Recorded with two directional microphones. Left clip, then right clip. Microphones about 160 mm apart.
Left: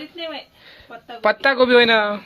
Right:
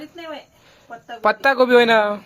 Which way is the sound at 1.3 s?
25° right (ahead or behind).